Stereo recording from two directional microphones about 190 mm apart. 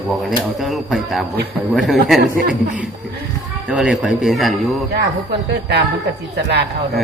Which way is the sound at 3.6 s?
5° right (ahead or behind).